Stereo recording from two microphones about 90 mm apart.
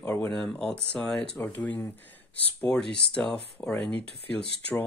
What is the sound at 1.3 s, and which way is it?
Speech, 15° left (ahead or behind).